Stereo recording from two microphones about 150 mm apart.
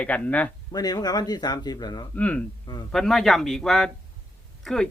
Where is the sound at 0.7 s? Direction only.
25° left (ahead or behind).